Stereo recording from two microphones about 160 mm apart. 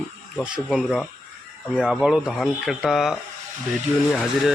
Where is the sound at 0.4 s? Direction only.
5° right (ahead or behind).